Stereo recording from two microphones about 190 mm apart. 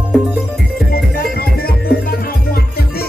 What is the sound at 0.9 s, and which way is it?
Music, 55° left (ahead or behind).